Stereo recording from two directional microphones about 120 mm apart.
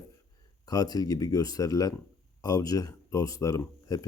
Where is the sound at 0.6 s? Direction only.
30° left (ahead or behind).